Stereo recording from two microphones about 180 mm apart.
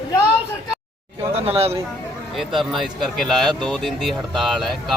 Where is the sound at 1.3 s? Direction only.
35° right (ahead or behind).